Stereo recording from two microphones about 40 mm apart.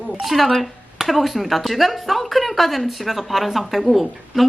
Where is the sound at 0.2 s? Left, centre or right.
Centre.